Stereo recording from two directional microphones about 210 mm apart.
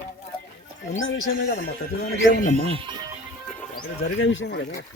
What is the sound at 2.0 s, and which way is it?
Speech, 45° left (ahead or behind).